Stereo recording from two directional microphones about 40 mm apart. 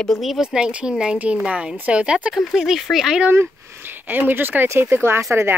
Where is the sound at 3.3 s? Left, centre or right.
Right.